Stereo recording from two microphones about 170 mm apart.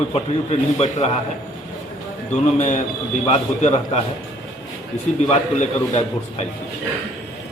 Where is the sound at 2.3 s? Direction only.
40° left (ahead or behind).